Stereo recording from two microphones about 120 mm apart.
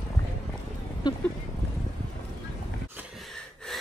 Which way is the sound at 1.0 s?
35° left (ahead or behind).